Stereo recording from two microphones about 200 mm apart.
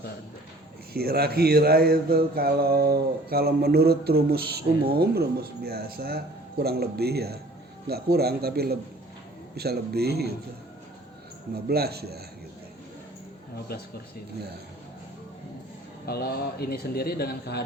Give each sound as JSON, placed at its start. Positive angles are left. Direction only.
{"t": 0.9, "sound": "speech", "side_deg": -50}
{"t": 11.5, "sound": "speech", "side_deg": -50}
{"t": 13.7, "sound": "speech", "side_deg": 50}
{"t": 16.0, "sound": "speech", "side_deg": 50}